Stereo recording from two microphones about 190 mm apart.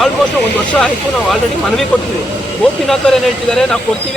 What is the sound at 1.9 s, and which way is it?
Speech, 5° left (ahead or behind).